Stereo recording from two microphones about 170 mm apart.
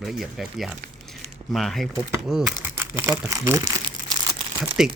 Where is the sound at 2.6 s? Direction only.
10° right (ahead or behind).